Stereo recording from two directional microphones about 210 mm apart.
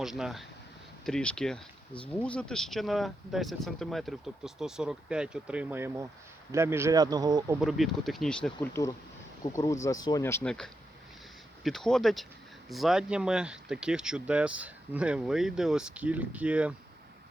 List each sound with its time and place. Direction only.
0.0 s speech: centre (ahead or behind); by 7.5 s 20° right (ahead or behind)
7.6 s speech: centre (ahead or behind)